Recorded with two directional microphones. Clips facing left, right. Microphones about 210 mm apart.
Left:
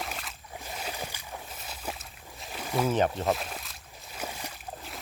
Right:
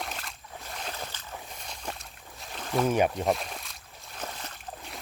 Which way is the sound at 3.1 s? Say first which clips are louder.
Right 1 dB; centre (ahead or behind).